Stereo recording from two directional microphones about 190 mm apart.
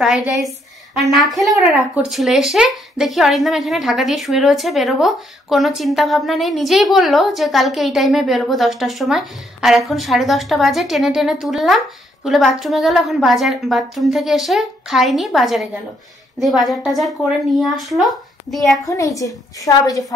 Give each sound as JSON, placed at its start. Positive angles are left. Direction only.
{"t": 0.0, "sound": "speech", "side_deg": 0}
{"t": 18.9, "sound": "a woman's voice", "side_deg": 15}